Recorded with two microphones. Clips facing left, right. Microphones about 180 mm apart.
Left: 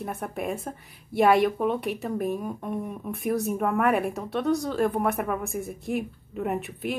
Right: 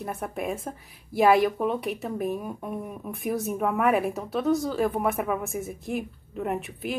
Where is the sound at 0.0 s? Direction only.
Centre (ahead or behind).